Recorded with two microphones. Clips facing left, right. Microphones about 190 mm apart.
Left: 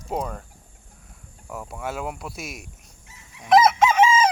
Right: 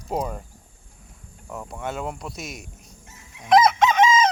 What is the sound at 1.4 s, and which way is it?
Speech, centre (ahead or behind).